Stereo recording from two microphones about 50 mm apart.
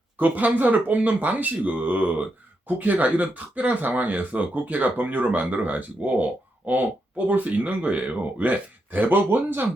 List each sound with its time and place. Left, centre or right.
0.2 s speech: right